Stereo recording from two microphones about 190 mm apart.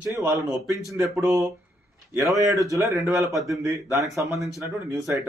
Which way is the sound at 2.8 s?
15° right (ahead or behind).